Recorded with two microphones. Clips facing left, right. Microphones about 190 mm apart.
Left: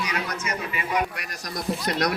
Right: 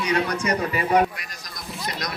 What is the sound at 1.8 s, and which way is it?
Speech, 65° left (ahead or behind).